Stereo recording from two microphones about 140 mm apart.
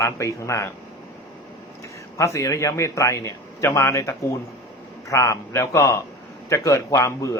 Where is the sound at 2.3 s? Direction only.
20° left (ahead or behind).